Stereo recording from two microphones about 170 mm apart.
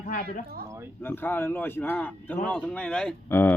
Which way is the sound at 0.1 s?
50° left (ahead or behind).